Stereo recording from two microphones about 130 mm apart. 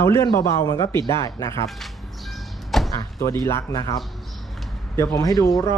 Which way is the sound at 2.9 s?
20° left (ahead or behind).